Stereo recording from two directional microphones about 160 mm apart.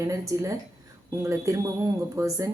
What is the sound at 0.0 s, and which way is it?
A woman's voice, 20° right (ahead or behind).